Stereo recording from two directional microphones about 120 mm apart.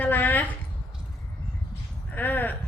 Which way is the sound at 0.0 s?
15° left (ahead or behind).